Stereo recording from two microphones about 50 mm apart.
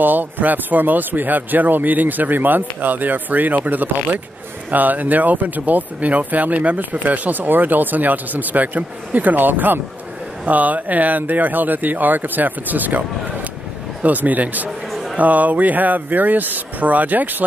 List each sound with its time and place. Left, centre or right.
0.0 s speech: right
14.9 s music: centre
15.1 s speech: right